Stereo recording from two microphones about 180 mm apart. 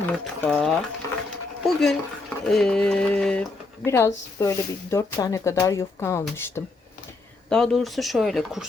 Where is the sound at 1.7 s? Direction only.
5° left (ahead or behind).